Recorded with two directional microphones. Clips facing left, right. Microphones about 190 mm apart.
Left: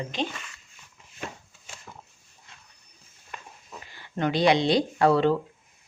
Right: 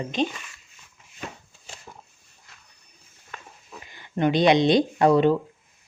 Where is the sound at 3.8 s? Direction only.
20° right (ahead or behind).